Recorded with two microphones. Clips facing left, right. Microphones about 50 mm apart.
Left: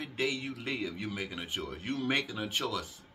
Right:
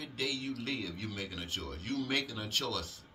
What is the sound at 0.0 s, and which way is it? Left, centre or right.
A man's voice, left.